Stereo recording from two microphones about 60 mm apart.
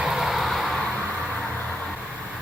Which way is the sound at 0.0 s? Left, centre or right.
Centre.